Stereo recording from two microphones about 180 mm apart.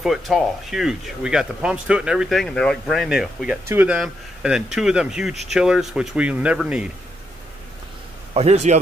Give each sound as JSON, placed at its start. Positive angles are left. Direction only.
{"t": 0.0, "sound": "speech", "side_deg": 0}
{"t": 8.4, "sound": "a man's voice", "side_deg": -35}